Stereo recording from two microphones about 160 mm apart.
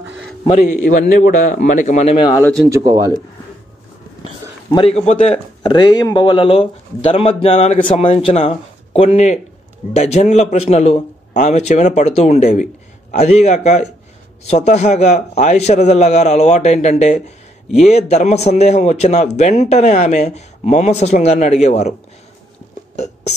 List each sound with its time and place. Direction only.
0.5 s a man's voice: 50° left (ahead or behind)
2.7 s speech: 25° right (ahead or behind)
4.7 s a man's voice: 40° left (ahead or behind)